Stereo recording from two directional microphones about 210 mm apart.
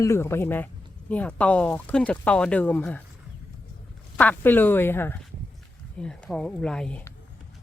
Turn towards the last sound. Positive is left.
turn(degrees=5)  # may be behind; listen again after turning